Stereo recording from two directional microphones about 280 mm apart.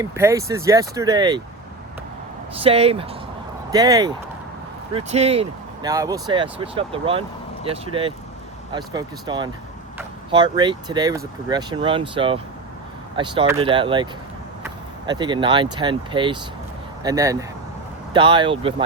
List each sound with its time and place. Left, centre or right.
0.0 s speech: centre
2.6 s speech: right